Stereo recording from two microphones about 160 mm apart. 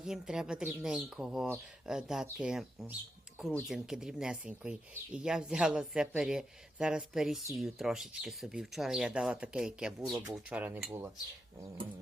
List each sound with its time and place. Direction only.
0.0 s speech: 5° right (ahead or behind)